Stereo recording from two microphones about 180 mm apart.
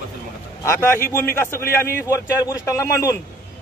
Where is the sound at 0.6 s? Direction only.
15° left (ahead or behind).